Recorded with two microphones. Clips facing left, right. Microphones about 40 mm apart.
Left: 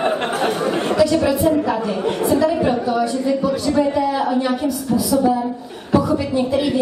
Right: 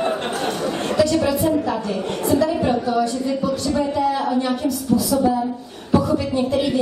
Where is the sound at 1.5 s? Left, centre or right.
Centre.